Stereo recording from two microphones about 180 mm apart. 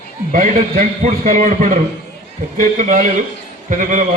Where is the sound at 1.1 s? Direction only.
50° right (ahead or behind).